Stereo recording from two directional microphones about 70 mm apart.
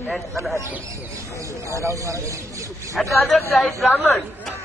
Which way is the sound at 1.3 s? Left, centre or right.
Right.